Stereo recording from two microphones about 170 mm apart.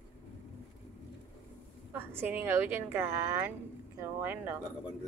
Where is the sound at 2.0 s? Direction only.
10° right (ahead or behind).